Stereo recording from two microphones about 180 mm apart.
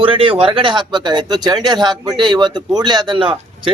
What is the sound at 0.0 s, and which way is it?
A man's voice, 30° right (ahead or behind).